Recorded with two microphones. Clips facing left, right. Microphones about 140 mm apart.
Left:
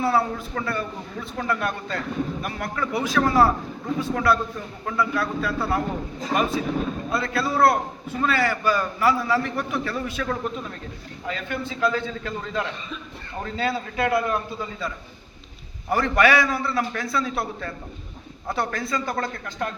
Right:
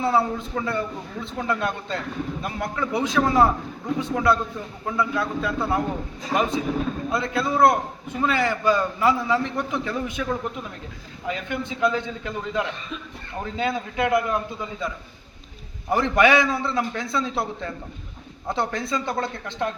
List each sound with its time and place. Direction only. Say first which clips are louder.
0.0 s a man's voice: even; 25° right (ahead or behind)